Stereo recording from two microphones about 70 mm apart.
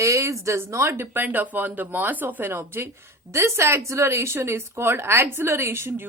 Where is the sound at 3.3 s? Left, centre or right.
Right.